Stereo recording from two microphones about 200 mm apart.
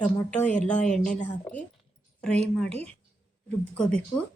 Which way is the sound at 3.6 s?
5° left (ahead or behind).